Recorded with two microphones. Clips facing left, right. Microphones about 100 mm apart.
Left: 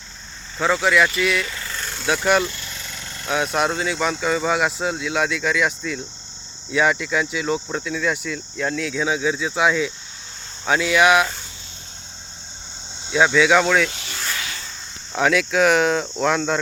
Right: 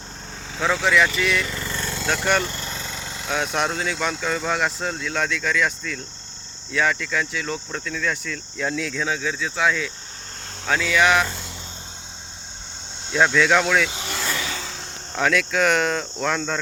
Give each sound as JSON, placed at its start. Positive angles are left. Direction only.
{"t": 0.6, "sound": "speech", "side_deg": 0}
{"t": 2.4, "sound": "vehicle", "side_deg": -45}
{"t": 2.8, "sound": "vehicle", "side_deg": -20}
{"t": 3.2, "sound": "speech", "side_deg": 5}
{"t": 13.1, "sound": "speech", "side_deg": 0}
{"t": 15.1, "sound": "speech", "side_deg": 5}